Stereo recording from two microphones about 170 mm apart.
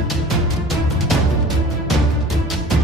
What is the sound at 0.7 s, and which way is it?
Music, centre (ahead or behind).